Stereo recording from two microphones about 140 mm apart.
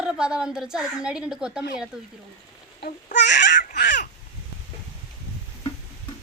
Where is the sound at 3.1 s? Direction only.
65° left (ahead or behind).